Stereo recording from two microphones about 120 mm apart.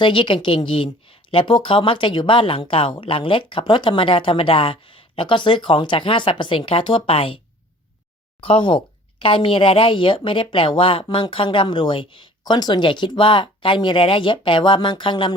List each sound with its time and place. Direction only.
0.0 s speech: 45° left (ahead or behind)